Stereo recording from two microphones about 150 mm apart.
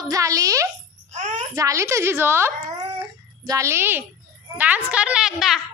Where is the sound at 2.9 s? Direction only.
20° right (ahead or behind).